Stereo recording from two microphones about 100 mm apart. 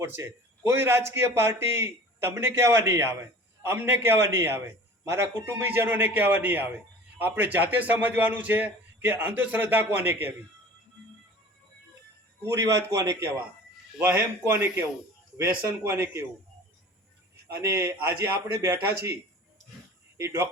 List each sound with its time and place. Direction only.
0.0 s a man's voice: 25° right (ahead or behind)
12.5 s a man's voice: 30° right (ahead or behind)
14.0 s a man's voice: 20° right (ahead or behind)
17.5 s a man's voice: 30° right (ahead or behind)
20.1 s a man's voice: 25° right (ahead or behind)